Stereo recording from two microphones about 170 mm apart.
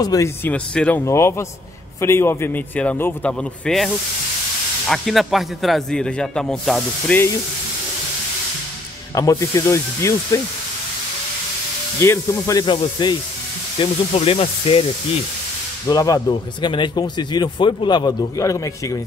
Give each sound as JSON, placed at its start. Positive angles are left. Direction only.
{"t": 0.0, "sound": "a man's voice", "side_deg": 20}
{"t": 9.1, "sound": "a man's voice", "side_deg": 20}
{"t": 12.0, "sound": "speech", "side_deg": 15}
{"t": 15.9, "sound": "speech", "side_deg": 20}